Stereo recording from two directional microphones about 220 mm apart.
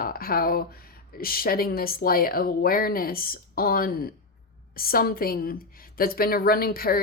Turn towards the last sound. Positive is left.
turn(degrees=40)  # may be behind; listen again after turning